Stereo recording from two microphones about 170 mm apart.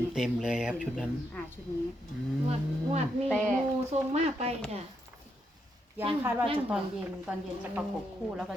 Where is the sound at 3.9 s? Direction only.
40° right (ahead or behind).